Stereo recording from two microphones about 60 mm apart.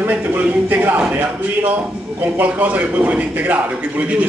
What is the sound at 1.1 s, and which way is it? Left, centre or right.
A man's voice, right.